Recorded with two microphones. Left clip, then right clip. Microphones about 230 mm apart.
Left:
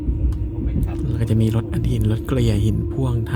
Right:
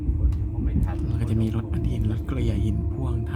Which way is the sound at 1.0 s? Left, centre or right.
Centre.